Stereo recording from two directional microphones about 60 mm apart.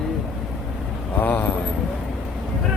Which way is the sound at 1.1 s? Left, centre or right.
Left.